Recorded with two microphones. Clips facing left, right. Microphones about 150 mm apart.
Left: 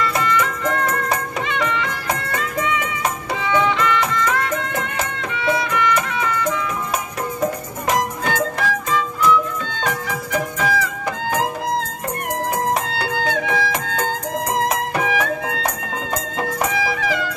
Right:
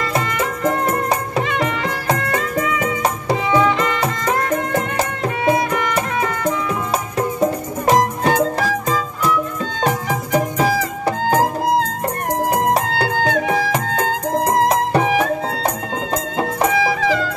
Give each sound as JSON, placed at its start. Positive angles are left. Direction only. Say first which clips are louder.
{"t": 0.0, "sound": "music", "louder": "even", "side_deg": -35}
{"t": 12.8, "sound": "music", "louder": "right 4 dB", "side_deg": -40}